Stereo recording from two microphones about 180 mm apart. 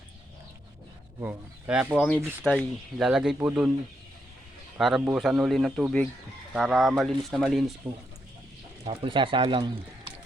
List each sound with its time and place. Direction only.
1.2 s speech: 10° right (ahead or behind)
4.8 s speech: centre (ahead or behind)
8.8 s speech: 30° right (ahead or behind)